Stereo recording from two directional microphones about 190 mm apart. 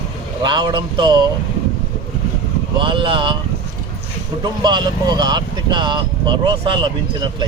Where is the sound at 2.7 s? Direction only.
25° right (ahead or behind).